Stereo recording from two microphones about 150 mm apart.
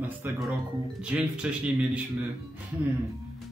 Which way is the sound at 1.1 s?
10° right (ahead or behind).